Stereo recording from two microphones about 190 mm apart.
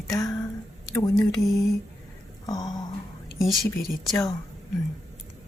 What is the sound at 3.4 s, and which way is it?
Speech, centre (ahead or behind).